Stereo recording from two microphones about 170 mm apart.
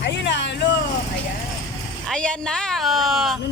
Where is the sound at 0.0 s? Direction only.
90° left.